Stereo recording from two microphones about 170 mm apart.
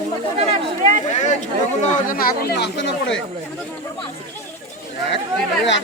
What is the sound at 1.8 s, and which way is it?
Speech, 55° left (ahead or behind).